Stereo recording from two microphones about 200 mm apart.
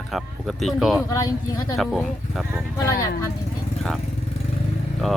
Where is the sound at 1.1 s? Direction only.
20° left (ahead or behind).